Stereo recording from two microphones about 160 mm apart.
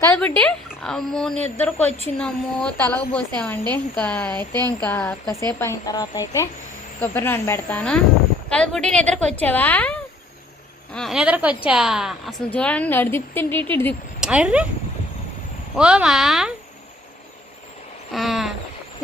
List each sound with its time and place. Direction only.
0.2 s a woman's voice: 10° left (ahead or behind)
12.5 s speech: 10° left (ahead or behind)
14.2 s speech: 5° right (ahead or behind)
15.7 s a woman's voice: 5° right (ahead or behind)
18.1 s a sound: centre (ahead or behind)